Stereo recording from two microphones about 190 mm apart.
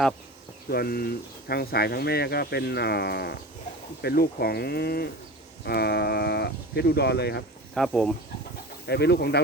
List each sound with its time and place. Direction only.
0.7 s speech: 50° left (ahead or behind)
7.7 s speech: centre (ahead or behind)
8.9 s speech: 60° left (ahead or behind)